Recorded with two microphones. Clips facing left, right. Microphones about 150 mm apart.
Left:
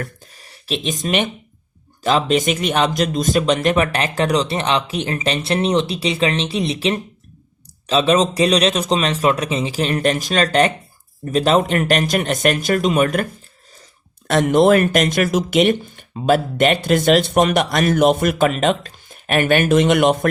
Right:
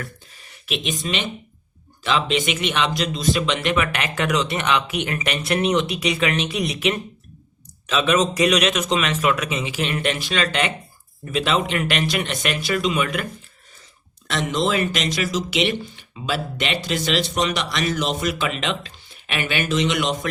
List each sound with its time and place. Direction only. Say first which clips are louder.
0.0 s speech: left 5 dB; 40° left (ahead or behind)
14.3 s speech: left 9 dB; 55° left (ahead or behind)